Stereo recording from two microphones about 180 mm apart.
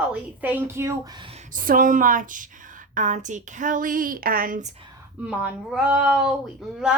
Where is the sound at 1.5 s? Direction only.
50° right (ahead or behind).